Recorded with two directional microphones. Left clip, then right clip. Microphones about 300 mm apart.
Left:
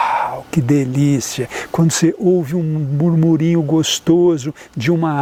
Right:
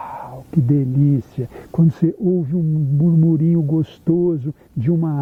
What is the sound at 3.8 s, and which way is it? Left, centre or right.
Speech, centre.